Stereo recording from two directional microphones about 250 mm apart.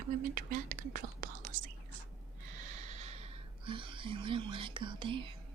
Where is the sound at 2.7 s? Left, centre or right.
Right.